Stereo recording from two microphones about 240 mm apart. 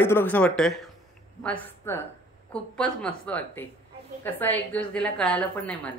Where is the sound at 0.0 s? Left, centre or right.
Centre.